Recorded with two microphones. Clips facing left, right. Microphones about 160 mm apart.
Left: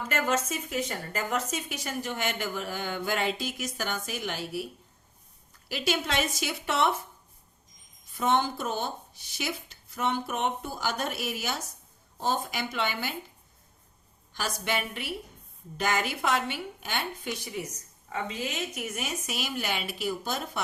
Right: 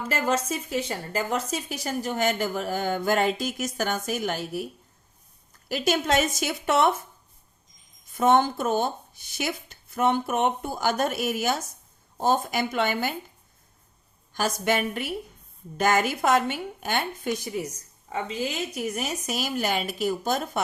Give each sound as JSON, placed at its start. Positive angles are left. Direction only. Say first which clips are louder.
{"t": 0.1, "sound": "speech", "louder": "right 3 dB", "side_deg": -35}
{"t": 8.1, "sound": "speech", "louder": "right 6 dB", "side_deg": -50}
{"t": 14.3, "sound": "speech", "louder": "right 6 dB", "side_deg": -45}